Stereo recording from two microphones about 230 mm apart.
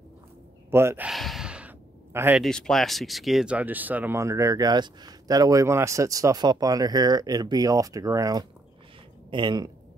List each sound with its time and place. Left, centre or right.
0.7 s gasp: centre
2.1 s speech: centre